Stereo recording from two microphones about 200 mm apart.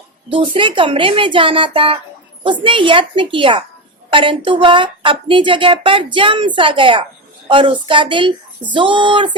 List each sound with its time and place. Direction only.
0.3 s speech: 25° right (ahead or behind)